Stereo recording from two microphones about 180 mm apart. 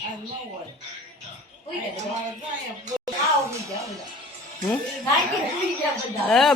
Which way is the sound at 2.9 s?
20° right (ahead or behind).